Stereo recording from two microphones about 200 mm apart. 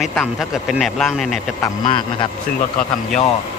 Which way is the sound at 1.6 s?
25° left (ahead or behind).